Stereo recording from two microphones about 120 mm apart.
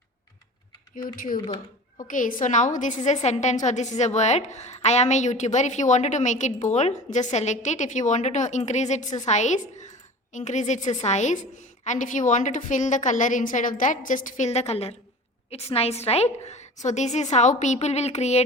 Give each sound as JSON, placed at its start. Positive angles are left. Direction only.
{"t": 2.0, "sound": "a woman's voice", "side_deg": 90}
{"t": 11.9, "sound": "a woman's voice", "side_deg": 90}